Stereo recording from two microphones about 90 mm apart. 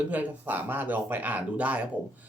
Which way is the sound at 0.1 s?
20° right (ahead or behind).